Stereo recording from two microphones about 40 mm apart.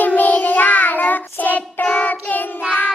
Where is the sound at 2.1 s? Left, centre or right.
Left.